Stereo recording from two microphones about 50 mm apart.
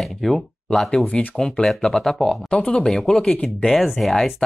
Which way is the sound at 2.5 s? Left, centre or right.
Left.